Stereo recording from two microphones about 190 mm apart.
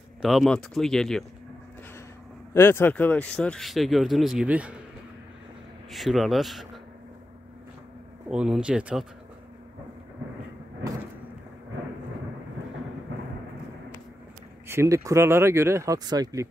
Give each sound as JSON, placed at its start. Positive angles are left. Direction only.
{"t": 0.2, "sound": "speech", "side_deg": 0}
{"t": 2.5, "sound": "speech", "side_deg": 15}
{"t": 5.9, "sound": "speech", "side_deg": 0}
{"t": 8.3, "sound": "speech", "side_deg": -5}
{"t": 14.7, "sound": "speech", "side_deg": -15}